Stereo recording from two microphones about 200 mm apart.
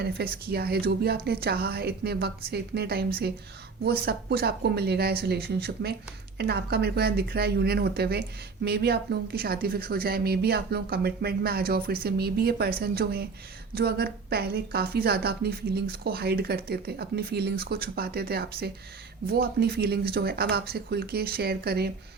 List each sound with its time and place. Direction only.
0.0 s a woman's voice: 50° right (ahead or behind)